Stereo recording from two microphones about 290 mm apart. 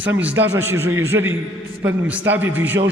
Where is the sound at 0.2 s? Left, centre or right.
Centre.